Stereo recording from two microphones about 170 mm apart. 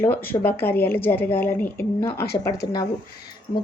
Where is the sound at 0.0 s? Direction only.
10° left (ahead or behind).